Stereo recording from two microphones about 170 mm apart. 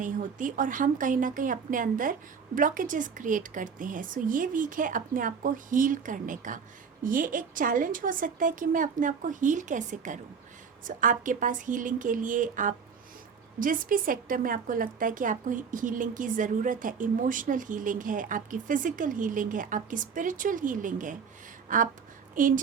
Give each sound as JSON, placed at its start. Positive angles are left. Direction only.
{"t": 0.0, "sound": "a woman's voice", "side_deg": -50}